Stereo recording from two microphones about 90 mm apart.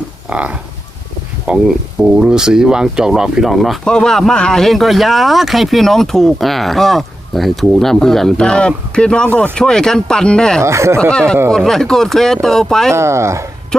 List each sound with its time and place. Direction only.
0.3 s speech: 15° right (ahead or behind); by 10.6 s 10° left (ahead or behind)
10.6 s speech: 30° right (ahead or behind)
11.1 s speech: 10° left (ahead or behind)
12.9 s speech: 30° right (ahead or behind)